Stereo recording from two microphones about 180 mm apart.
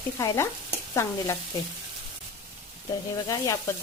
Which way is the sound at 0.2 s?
20° left (ahead or behind).